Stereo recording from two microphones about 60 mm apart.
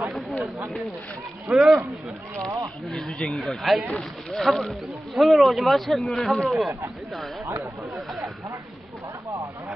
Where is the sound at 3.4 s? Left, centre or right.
Centre.